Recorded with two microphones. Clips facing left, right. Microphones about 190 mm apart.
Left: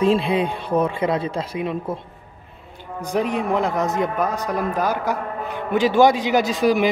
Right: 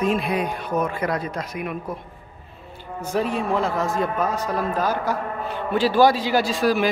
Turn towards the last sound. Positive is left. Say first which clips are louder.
# left 2 dB
turn(degrees=20)  # may be behind; listen again after turning